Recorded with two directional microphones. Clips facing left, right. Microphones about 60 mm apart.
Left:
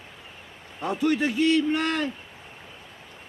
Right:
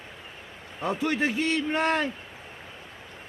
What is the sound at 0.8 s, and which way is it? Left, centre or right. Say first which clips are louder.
Speech: left 2 dB; right.